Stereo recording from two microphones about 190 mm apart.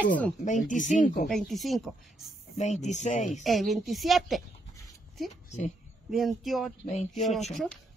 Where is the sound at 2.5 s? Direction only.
35° left (ahead or behind).